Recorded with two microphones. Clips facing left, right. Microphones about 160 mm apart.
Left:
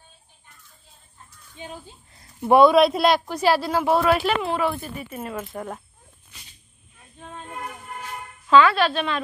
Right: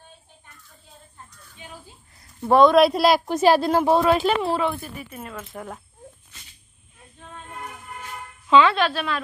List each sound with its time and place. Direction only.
2.4 s speech: 10° left (ahead or behind)
2.7 s speech: centre (ahead or behind)
3.3 s speech: 20° right (ahead or behind)
4.9 s speech: 5° left (ahead or behind)
8.5 s a woman's voice: 20° right (ahead or behind)
8.9 s speech: 5° right (ahead or behind)